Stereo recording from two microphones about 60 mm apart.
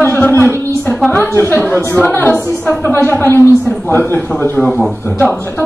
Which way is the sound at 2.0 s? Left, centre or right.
Left.